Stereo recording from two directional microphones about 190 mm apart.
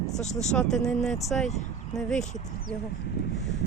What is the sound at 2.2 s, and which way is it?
Speech, 40° left (ahead or behind).